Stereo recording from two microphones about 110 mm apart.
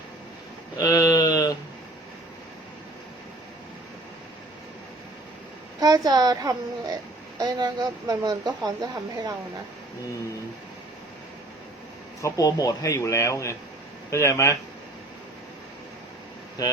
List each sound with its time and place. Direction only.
0.8 s a sound: 35° left (ahead or behind)
5.8 s speech: 35° right (ahead or behind)
12.2 s speech: 30° left (ahead or behind)
16.6 s speech: 35° left (ahead or behind)